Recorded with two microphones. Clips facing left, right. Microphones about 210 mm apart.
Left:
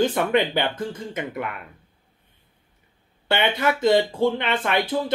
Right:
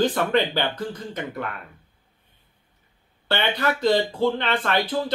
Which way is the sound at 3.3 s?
20° left (ahead or behind).